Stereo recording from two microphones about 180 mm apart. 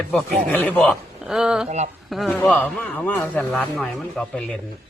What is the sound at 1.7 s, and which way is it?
Speech, 40° right (ahead or behind).